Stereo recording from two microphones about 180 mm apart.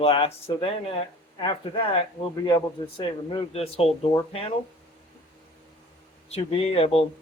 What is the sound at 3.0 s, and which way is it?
Speech, 30° left (ahead or behind).